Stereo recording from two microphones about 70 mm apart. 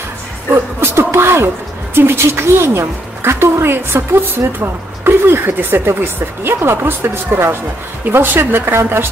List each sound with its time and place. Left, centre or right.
0.5 s a woman's voice: right